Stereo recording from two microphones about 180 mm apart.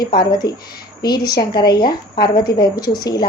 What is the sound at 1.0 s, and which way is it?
Speech, 25° left (ahead or behind).